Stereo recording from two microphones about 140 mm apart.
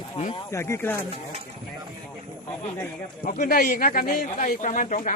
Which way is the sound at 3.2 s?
75° left (ahead or behind).